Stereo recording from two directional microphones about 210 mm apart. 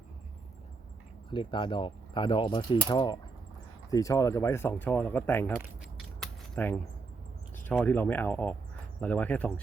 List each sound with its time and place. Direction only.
1.3 s speech: 25° left (ahead or behind)
6.1 s keys jangling: 5° left (ahead or behind)
7.5 s speech: 10° left (ahead or behind)